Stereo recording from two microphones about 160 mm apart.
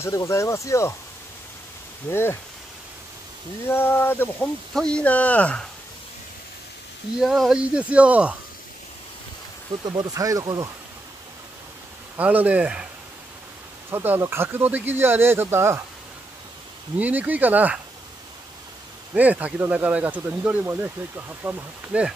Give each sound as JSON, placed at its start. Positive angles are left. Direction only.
{"t": 0.0, "sound": "speech", "side_deg": 20}
{"t": 2.0, "sound": "speech", "side_deg": 15}
{"t": 3.6, "sound": "speech", "side_deg": 15}
{"t": 7.2, "sound": "speech", "side_deg": 0}
{"t": 9.8, "sound": "speech", "side_deg": -25}
{"t": 12.2, "sound": "speech", "side_deg": -10}
{"t": 13.8, "sound": "speech", "side_deg": -15}
{"t": 17.0, "sound": "speech", "side_deg": -10}
{"t": 19.1, "sound": "speech", "side_deg": -10}